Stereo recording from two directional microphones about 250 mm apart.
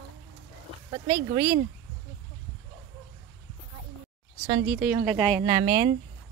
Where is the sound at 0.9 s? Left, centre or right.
Centre.